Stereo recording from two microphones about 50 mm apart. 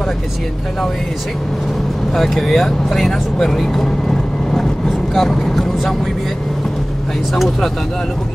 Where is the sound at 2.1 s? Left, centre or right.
Centre.